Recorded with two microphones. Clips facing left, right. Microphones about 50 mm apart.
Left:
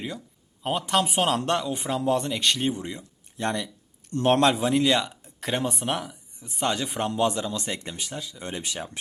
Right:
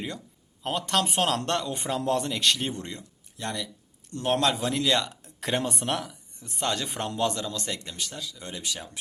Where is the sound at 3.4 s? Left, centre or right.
Left.